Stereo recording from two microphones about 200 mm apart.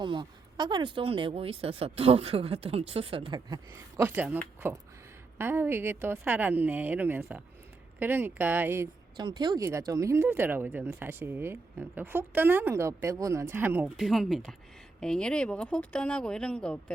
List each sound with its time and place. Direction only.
0.0 s speech: 25° right (ahead or behind)
5.4 s speech: 10° right (ahead or behind); by 16.8 s 5° left (ahead or behind)